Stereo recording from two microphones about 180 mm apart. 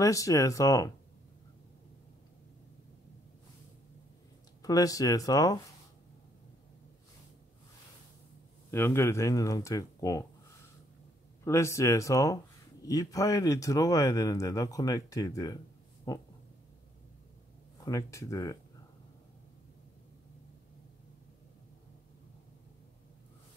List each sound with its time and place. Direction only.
0.0 s speech: 20° left (ahead or behind)
4.6 s speech: 20° left (ahead or behind)
8.6 s speech: 15° left (ahead or behind)
11.4 s speech: 15° left (ahead or behind)
17.7 s speech: 20° left (ahead or behind)